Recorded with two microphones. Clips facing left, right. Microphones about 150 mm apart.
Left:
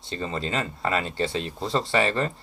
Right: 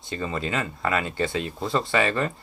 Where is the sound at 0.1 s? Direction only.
25° left (ahead or behind).